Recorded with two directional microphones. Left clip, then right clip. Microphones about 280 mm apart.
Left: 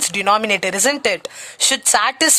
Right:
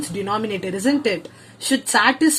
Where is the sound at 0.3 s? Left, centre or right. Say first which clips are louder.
Left 9 dB; left.